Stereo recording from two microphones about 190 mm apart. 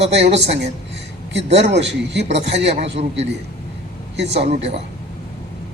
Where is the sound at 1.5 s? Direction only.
65° right (ahead or behind).